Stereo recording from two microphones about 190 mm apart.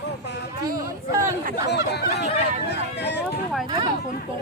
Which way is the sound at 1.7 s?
60° left (ahead or behind).